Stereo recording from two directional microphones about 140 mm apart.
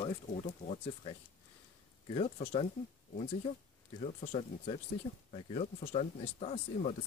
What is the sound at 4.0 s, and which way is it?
Speech, 50° left (ahead or behind).